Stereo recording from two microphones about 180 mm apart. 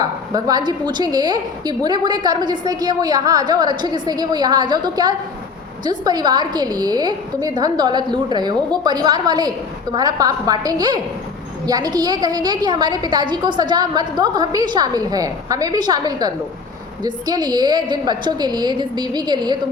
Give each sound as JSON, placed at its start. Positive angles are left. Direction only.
{"t": 0.0, "sound": "a woman's voice", "side_deg": -20}